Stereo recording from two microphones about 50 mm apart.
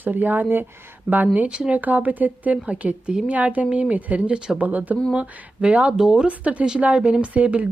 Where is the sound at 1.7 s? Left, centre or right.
Right.